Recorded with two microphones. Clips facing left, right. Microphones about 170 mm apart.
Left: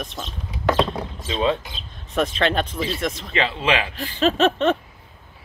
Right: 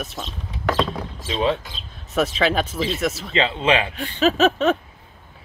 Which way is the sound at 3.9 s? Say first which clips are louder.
Right 1 dB; centre (ahead or behind).